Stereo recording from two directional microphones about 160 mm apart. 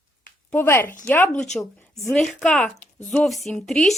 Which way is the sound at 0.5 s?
15° left (ahead or behind).